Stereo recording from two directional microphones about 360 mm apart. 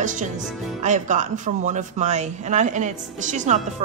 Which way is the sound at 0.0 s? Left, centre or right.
Right.